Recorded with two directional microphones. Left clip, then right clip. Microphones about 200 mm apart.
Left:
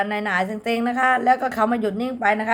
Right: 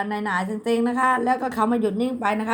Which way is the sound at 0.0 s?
20° left (ahead or behind).